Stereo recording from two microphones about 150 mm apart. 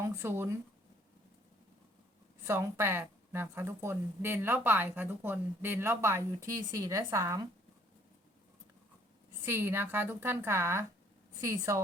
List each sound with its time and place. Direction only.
0.0 s speech: 15° right (ahead or behind)
2.4 s speech: 15° right (ahead or behind)
9.5 s a woman's voice: 15° right (ahead or behind)